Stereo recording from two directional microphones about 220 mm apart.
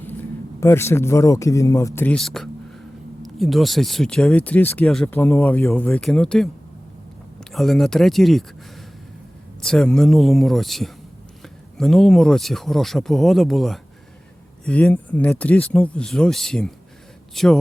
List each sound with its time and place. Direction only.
0.0 s speech: 10° left (ahead or behind)
9.6 s speech: 5° left (ahead or behind)